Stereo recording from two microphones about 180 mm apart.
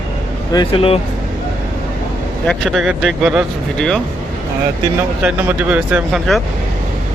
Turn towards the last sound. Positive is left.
turn(degrees=0)  # may be behind; listen again after turning